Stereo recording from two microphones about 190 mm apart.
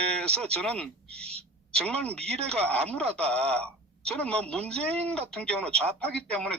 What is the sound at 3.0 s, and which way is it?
Speech, 35° right (ahead or behind).